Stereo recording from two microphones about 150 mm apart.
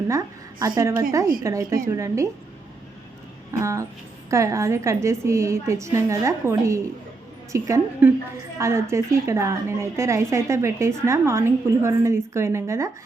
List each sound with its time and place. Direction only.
0.1 s a sound: 20° right (ahead or behind)
0.8 s a woman's voice: 20° right (ahead or behind)
3.6 s a woman's voice: 20° right (ahead or behind)